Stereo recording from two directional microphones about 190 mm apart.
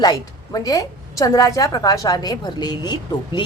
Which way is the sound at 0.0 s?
20° left (ahead or behind).